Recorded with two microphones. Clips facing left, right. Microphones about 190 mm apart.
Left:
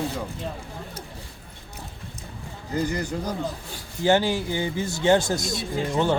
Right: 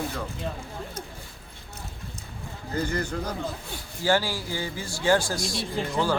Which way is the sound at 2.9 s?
15° left (ahead or behind).